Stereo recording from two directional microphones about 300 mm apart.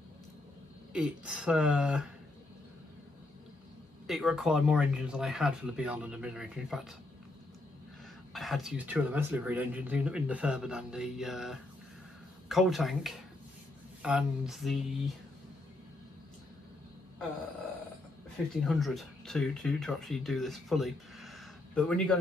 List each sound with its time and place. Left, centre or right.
0.9 s speech: centre
4.1 s speech: centre
8.3 s speech: centre
18.6 s speech: centre